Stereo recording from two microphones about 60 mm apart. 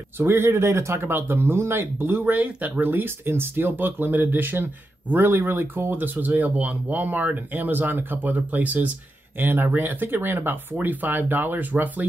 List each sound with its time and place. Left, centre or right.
0.2 s speech: right
2.3 s speech: right